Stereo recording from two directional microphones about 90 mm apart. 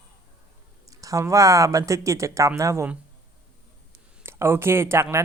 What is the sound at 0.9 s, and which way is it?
Speech, 40° right (ahead or behind).